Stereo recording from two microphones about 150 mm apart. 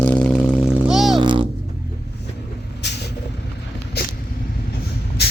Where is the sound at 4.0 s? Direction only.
90° left.